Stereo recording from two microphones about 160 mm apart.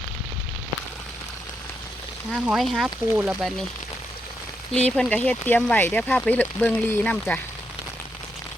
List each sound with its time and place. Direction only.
2.3 s speech: centre (ahead or behind)
4.9 s speech: 5° left (ahead or behind)